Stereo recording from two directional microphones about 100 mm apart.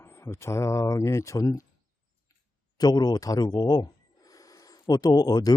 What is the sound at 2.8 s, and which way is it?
Speech, 45° left (ahead or behind).